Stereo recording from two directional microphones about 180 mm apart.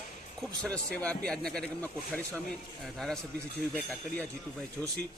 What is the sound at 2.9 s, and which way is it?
Speech, 5° left (ahead or behind).